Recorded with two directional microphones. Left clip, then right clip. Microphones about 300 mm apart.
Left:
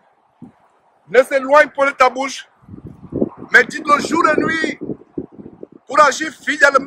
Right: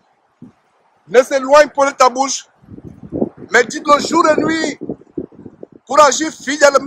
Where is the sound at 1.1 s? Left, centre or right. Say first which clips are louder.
Right 2 dB; centre.